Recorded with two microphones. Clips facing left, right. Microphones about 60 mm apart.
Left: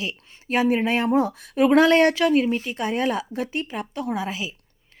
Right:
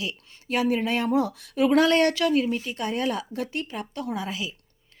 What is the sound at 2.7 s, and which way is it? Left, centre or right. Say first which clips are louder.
A woman's voice: left 3 dB; left.